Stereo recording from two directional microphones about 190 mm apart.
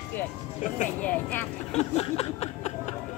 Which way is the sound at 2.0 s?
35° left (ahead or behind).